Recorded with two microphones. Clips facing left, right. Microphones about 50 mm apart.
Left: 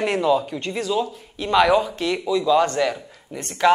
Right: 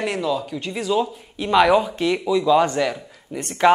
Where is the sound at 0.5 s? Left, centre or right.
Centre.